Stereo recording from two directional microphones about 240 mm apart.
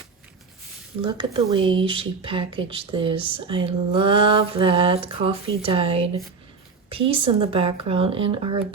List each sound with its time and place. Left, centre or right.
1.0 s speech: centre